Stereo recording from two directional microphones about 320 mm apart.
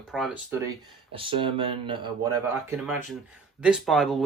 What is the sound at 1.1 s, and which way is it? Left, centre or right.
Speech, centre.